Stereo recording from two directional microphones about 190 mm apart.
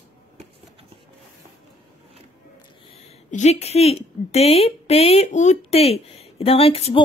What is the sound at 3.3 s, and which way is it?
A woman's voice, 35° left (ahead or behind).